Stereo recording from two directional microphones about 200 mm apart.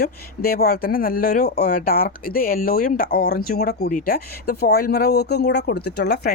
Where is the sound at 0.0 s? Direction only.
50° left (ahead or behind).